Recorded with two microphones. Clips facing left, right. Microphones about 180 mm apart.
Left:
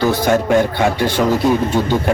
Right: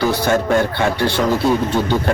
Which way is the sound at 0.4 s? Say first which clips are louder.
Left 2 dB; 15° left (ahead or behind).